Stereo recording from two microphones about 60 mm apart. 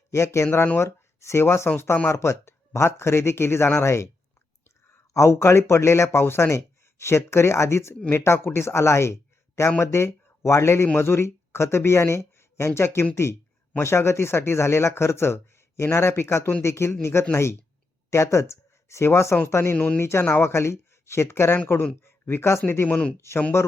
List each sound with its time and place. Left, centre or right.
0.1 s speech: left
19.7 s speech: left
20.0 s speech: left
22.9 s speech: centre
23.5 s speech: left